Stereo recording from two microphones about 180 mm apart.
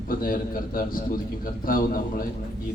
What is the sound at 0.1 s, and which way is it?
A man's voice, 50° left (ahead or behind).